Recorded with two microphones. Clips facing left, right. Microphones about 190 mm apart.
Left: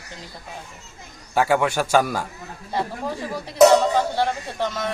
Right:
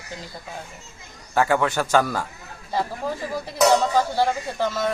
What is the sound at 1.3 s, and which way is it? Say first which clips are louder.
Speech: left 1 dB; 10° left (ahead or behind).